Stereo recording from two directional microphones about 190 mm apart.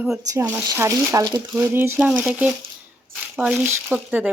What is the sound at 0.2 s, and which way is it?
Speech, 15° right (ahead or behind).